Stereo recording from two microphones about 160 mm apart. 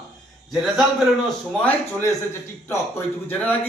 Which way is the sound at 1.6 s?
15° left (ahead or behind).